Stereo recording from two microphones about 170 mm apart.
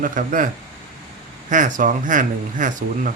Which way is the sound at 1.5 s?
50° right (ahead or behind).